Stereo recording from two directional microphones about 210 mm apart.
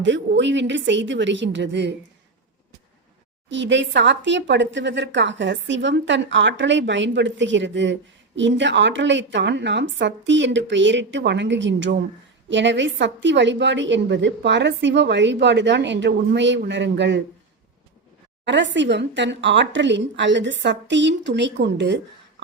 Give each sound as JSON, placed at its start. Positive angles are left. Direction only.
{"t": 0.0, "sound": "a woman's voice", "side_deg": -60}
{"t": 3.5, "sound": "a woman's voice", "side_deg": -60}
{"t": 18.4, "sound": "a woman's voice", "side_deg": -60}